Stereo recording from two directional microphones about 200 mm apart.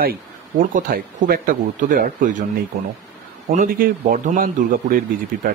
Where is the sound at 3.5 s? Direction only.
40° right (ahead or behind).